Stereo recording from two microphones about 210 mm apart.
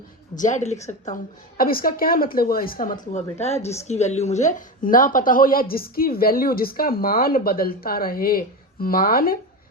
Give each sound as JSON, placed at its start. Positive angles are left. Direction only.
{"t": 0.3, "sound": "a woman's voice", "side_deg": 35}